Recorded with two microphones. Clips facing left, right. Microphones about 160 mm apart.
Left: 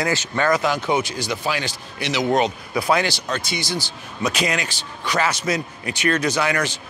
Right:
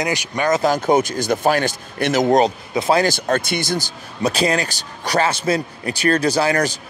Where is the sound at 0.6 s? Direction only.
45° right (ahead or behind).